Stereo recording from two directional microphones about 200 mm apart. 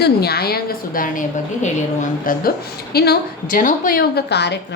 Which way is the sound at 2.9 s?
50° left (ahead or behind).